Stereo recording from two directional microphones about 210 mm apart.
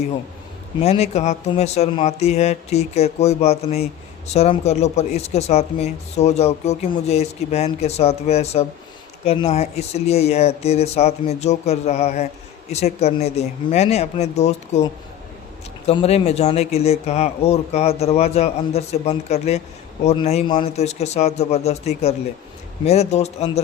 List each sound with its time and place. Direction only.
0.8 s speech: 30° left (ahead or behind)
15.9 s speech: 30° left (ahead or behind)